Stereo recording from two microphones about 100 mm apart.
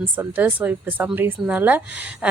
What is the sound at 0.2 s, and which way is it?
A woman's voice, 15° right (ahead or behind).